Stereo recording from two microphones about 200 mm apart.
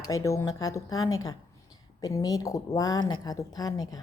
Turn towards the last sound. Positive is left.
turn(degrees=20)  # may be behind; listen again after turning